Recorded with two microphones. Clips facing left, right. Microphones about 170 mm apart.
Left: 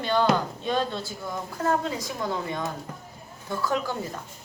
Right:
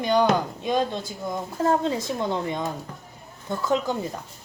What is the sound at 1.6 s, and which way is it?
A woman's voice, 30° right (ahead or behind).